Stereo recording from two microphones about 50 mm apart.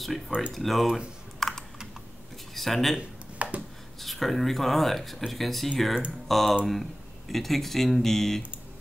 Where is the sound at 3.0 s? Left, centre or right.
Right.